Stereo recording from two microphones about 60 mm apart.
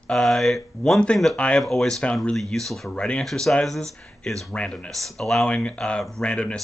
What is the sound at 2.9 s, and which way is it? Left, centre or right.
Speech, centre.